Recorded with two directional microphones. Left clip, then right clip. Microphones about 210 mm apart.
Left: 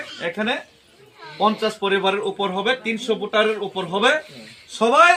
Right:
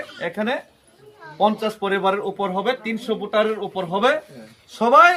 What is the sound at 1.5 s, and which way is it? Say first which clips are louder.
Speech: left 2 dB; 25° right (ahead or behind).